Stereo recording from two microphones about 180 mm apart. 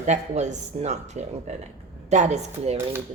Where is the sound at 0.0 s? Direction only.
40° right (ahead or behind).